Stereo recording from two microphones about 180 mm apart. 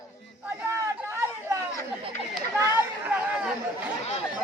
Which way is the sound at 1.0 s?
15° right (ahead or behind).